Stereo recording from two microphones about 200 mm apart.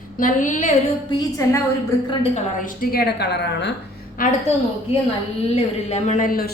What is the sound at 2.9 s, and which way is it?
Speech, 55° left (ahead or behind).